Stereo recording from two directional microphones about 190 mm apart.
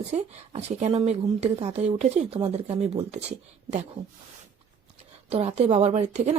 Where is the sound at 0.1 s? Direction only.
35° right (ahead or behind).